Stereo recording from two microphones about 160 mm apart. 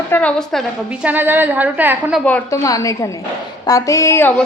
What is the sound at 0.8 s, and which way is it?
A woman's voice, 10° right (ahead or behind).